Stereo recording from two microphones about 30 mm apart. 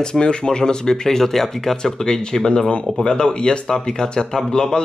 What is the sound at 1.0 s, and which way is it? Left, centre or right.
Speech, centre.